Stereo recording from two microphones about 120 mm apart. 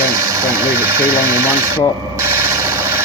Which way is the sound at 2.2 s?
20° right (ahead or behind).